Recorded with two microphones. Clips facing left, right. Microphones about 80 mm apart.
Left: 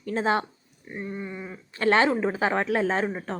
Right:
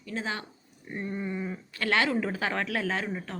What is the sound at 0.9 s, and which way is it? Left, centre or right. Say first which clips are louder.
Speech: right 1 dB; centre.